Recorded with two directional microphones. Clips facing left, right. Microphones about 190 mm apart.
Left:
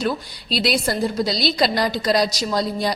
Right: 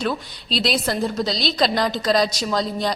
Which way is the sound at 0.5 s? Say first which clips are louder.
Left 1 dB; 5° left (ahead or behind).